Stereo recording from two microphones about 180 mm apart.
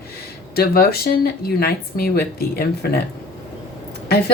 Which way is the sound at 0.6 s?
60° left (ahead or behind).